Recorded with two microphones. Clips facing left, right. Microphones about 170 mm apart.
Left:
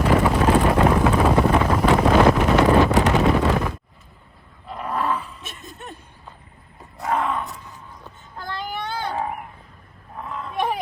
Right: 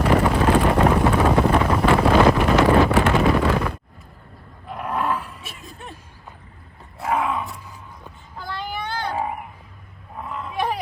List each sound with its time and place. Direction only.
0.1 s wind noise: centre (ahead or behind)
2.9 s vehicle: 20° left (ahead or behind)
3.2 s a sound: centre (ahead or behind)
4.7 s roar: centre (ahead or behind)
7.0 s roar: 5° right (ahead or behind)
8.4 s child singing: centre (ahead or behind)
10.2 s livestock: 5° right (ahead or behind)